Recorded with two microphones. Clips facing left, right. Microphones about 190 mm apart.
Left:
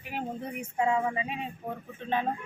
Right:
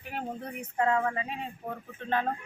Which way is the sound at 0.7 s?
10° left (ahead or behind).